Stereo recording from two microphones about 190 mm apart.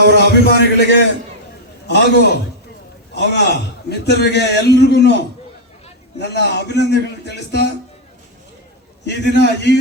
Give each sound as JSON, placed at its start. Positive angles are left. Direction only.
{"t": 0.0, "sound": "a man's voice", "side_deg": -65}
{"t": 0.4, "sound": "a man's voice", "side_deg": 65}
{"t": 9.0, "sound": "a man's voice", "side_deg": 65}